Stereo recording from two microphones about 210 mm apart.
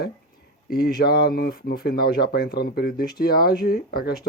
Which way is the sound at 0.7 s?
45° left (ahead or behind).